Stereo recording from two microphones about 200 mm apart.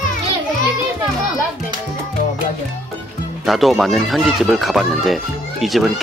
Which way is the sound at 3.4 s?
Centre (ahead or behind).